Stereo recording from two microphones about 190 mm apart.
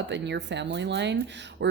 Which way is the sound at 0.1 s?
65° right (ahead or behind).